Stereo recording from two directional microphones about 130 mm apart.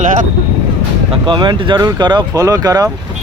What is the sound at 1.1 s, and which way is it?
Speech, 35° right (ahead or behind).